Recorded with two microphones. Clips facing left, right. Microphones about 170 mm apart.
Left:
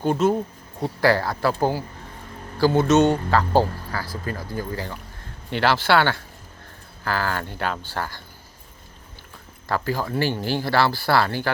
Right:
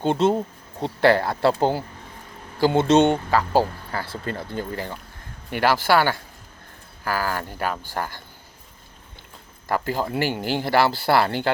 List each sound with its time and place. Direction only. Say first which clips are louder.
0.0 s speech: even; 25° right (ahead or behind)
3.3 s speech: left 1 dB; 10° right (ahead or behind)
3.9 s speech: right 3 dB; 25° right (ahead or behind)
9.6 s speech: right 1 dB; 20° right (ahead or behind)